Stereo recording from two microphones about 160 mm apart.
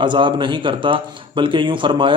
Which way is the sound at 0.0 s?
30° right (ahead or behind).